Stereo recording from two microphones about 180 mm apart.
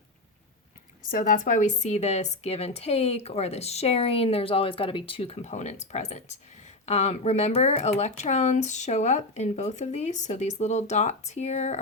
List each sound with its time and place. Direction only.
1.0 s speech: 50° left (ahead or behind)